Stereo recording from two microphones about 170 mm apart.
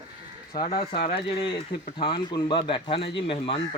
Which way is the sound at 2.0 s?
30° left (ahead or behind).